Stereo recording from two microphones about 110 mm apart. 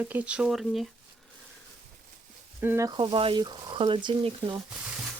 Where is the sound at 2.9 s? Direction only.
50° right (ahead or behind).